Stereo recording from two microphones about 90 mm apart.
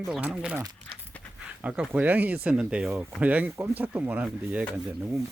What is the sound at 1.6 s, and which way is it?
Speech, 10° right (ahead or behind).